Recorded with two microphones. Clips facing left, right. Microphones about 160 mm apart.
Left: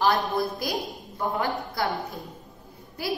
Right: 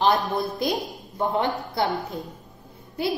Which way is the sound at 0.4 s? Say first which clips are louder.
Right 2 dB; 20° right (ahead or behind).